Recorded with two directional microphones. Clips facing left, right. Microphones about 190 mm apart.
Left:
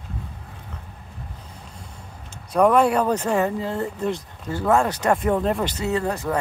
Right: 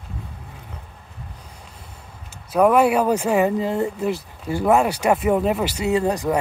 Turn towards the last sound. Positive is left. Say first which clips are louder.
# right 4 dB
turn(degrees=-15)  # may be behind; listen again after turning